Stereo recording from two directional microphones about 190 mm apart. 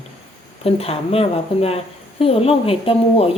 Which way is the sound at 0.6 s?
30° left (ahead or behind).